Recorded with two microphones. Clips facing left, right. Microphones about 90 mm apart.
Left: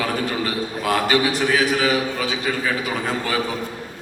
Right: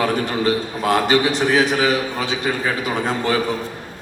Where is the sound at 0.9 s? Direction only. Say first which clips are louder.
Right 3 dB; 20° right (ahead or behind).